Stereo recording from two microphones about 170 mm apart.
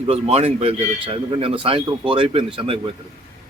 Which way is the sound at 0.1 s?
35° right (ahead or behind).